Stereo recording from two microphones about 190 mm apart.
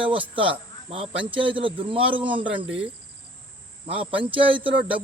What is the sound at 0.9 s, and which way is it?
Speech, 30° right (ahead or behind).